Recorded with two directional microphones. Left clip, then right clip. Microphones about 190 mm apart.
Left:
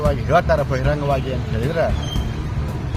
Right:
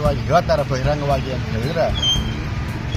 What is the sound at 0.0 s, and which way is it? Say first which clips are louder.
Speech: even; 5° left (ahead or behind).